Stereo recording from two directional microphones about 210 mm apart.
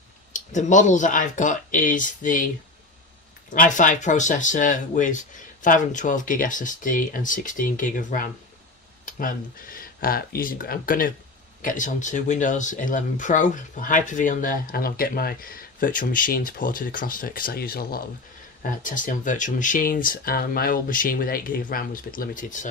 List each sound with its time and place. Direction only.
0.3 s speech: 35° left (ahead or behind)
3.5 s speech: 40° left (ahead or behind)